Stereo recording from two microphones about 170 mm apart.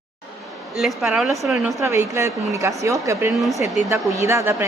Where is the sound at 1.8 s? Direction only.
15° right (ahead or behind).